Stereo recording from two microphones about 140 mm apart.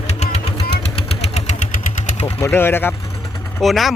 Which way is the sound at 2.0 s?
45° left (ahead or behind).